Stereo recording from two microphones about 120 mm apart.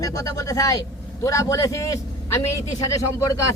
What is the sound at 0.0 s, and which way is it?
A man's voice, 30° left (ahead or behind).